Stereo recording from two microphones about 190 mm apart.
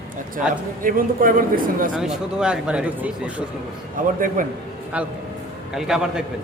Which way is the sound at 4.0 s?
45° right (ahead or behind).